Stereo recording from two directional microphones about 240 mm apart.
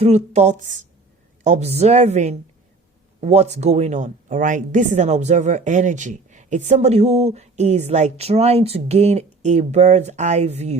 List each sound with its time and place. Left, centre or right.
0.0 s a woman's voice: right